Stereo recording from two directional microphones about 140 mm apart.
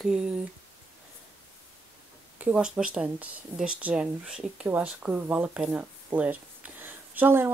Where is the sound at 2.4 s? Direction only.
10° right (ahead or behind).